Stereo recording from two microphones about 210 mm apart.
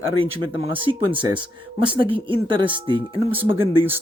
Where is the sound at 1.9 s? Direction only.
25° right (ahead or behind).